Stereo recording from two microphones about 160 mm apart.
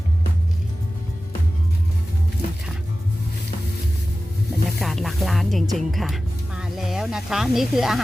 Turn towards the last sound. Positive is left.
turn(degrees=0)  # may be behind; listen again after turning